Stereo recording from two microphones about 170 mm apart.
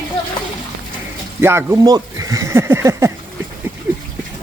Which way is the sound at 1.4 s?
15° right (ahead or behind).